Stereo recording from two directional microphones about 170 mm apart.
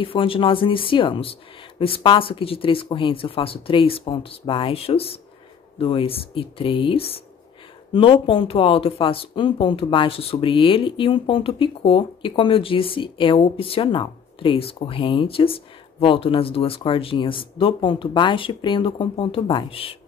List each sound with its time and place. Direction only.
0.0 s speech: 30° left (ahead or behind)